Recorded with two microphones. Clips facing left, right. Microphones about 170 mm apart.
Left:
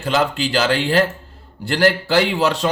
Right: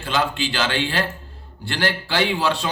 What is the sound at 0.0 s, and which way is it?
Speech, 40° left (ahead or behind).